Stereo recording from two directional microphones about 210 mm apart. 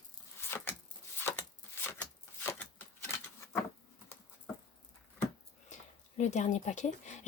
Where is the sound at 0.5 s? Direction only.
10° left (ahead or behind).